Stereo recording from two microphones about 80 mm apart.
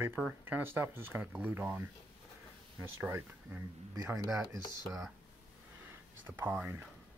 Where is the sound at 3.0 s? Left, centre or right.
Right.